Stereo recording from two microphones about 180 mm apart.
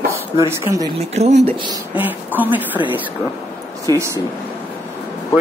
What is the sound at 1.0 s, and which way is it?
Speech, 40° right (ahead or behind).